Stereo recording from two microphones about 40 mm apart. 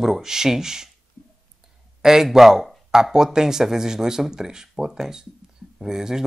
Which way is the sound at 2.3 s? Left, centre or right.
Centre.